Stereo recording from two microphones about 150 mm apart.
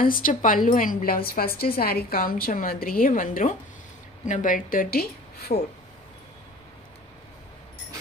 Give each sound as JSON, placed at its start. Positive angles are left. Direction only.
{"t": 0.0, "sound": "a woman's voice", "side_deg": 70}
{"t": 1.6, "sound": "a woman's voice", "side_deg": 90}